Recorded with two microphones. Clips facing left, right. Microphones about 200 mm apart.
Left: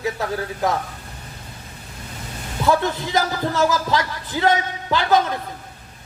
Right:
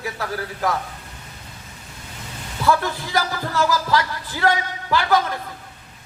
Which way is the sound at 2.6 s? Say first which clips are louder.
Left 1 dB; 20° left (ahead or behind).